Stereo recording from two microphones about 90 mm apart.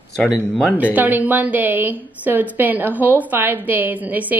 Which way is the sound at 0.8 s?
20° right (ahead or behind).